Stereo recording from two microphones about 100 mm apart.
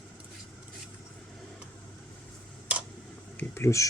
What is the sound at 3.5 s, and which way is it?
Speech, 30° left (ahead or behind).